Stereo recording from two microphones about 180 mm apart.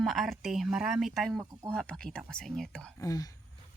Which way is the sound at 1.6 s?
5° left (ahead or behind).